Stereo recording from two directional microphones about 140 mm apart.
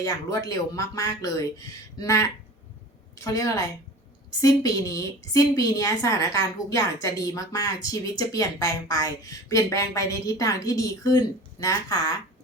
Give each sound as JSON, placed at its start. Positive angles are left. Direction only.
{"t": 0.0, "sound": "a woman's voice", "side_deg": 25}